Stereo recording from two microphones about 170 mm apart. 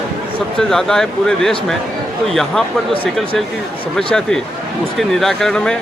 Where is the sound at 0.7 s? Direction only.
Centre (ahead or behind).